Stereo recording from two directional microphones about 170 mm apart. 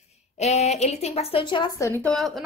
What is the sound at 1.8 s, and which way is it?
Speech, 15° left (ahead or behind).